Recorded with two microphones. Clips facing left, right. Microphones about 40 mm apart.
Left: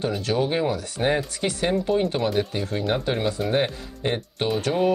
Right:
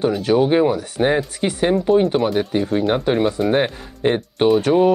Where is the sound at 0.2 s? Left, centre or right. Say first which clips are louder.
Right 9 dB; right.